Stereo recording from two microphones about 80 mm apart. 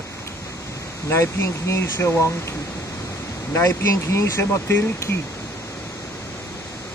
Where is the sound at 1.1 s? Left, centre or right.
Left.